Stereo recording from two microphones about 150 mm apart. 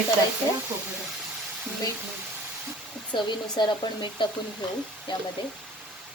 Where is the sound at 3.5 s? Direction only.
30° left (ahead or behind).